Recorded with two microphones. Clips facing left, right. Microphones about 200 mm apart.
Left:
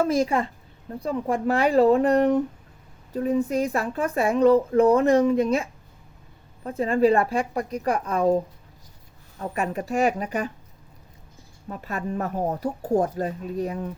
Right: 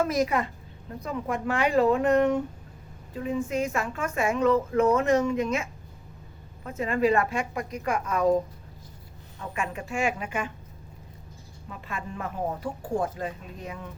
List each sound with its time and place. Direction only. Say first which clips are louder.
0.0 s a woman's voice: left 3 dB; 30° left (ahead or behind)
9.4 s a woman's voice: left 5 dB; 40° left (ahead or behind)
11.7 s a woman's voice: left 7 dB; 40° left (ahead or behind)